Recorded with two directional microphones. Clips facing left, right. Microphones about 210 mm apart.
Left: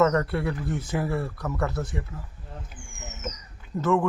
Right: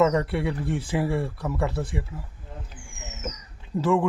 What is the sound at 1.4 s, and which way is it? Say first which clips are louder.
Speech: right 1 dB; 10° right (ahead or behind).